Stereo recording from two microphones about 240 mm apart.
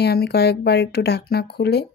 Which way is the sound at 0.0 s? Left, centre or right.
Left.